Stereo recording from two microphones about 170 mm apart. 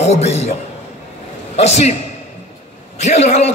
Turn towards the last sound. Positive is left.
turn(degrees=40)  # may be behind; listen again after turning